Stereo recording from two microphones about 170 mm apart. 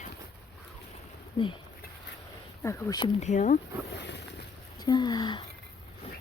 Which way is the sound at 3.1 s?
45° left (ahead or behind).